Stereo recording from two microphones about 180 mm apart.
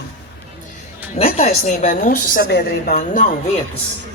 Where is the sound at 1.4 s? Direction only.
50° left (ahead or behind).